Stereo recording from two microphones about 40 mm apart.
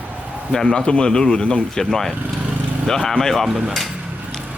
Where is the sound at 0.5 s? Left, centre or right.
Centre.